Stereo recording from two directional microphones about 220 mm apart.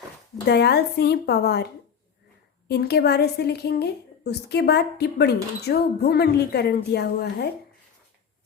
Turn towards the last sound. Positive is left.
turn(degrees=45)  # may be behind; listen again after turning